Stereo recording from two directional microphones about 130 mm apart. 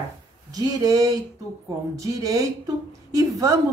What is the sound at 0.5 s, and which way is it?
Speech, 30° right (ahead or behind).